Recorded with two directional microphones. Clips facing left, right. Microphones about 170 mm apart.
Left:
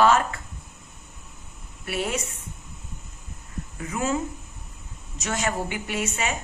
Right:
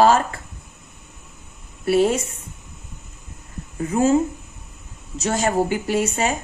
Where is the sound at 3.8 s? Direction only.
35° right (ahead or behind).